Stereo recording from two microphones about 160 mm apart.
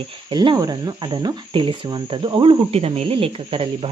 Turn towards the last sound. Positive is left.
turn(degrees=-35)  # may be behind; listen again after turning